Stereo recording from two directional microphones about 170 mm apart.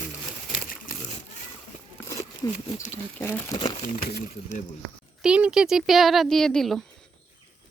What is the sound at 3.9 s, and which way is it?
Speech, 55° left (ahead or behind).